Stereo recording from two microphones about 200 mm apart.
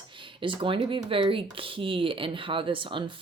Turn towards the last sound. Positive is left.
turn(degrees=-25)  # may be behind; listen again after turning